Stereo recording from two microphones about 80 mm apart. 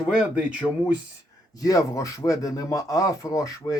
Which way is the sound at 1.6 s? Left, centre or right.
Left.